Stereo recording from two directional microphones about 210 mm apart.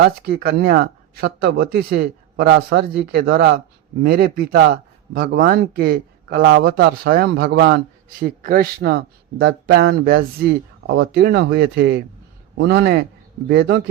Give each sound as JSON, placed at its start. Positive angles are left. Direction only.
{"t": 0.0, "sound": "a man's voice", "side_deg": -45}
{"t": 2.3, "sound": "a man's voice", "side_deg": -55}
{"t": 8.2, "sound": "a man's voice", "side_deg": -40}
{"t": 10.8, "sound": "speech", "side_deg": -70}
{"t": 11.1, "sound": "a man's voice", "side_deg": -50}